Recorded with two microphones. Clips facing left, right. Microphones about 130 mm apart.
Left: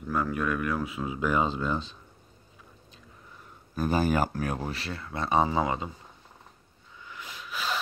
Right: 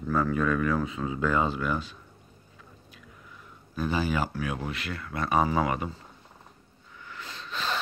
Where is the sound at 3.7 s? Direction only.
45° left (ahead or behind); by 6.0 s 20° left (ahead or behind).